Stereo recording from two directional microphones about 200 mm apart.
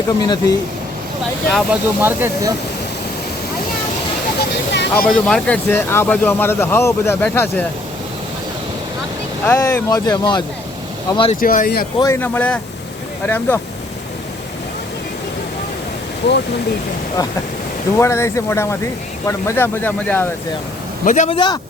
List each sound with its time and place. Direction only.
0.2 s speech: 20° left (ahead or behind)
1.5 s speech: 5° right (ahead or behind)
4.7 s speech: 55° left (ahead or behind)
5.0 s speech: 5° left (ahead or behind)
9.5 s speech: 10° left (ahead or behind)
11.3 s speech: 45° left (ahead or behind)
11.9 s speech: 15° left (ahead or behind)
16.2 s speech: 55° left (ahead or behind)
17.9 s speech: 15° left (ahead or behind)
21.0 s speech: 40° left (ahead or behind)
21.2 s speech: 25° left (ahead or behind)